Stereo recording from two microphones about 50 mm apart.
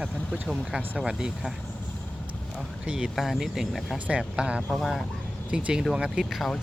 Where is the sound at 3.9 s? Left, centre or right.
Right.